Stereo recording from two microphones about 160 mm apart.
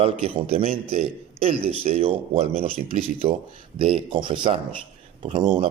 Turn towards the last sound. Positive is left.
turn(degrees=-30)  # may be behind; listen again after turning